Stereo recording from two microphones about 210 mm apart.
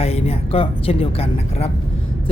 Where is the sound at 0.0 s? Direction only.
30° left (ahead or behind).